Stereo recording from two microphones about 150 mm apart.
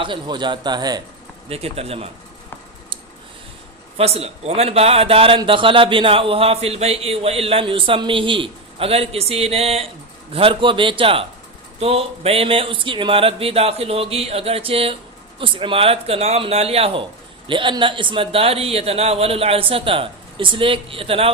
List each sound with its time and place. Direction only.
0.0 s speech: 30° right (ahead or behind)
1.5 s speech: 40° right (ahead or behind)
3.9 s speech: 40° right (ahead or behind)